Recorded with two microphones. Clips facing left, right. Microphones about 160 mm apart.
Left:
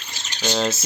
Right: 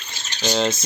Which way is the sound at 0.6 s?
5° left (ahead or behind).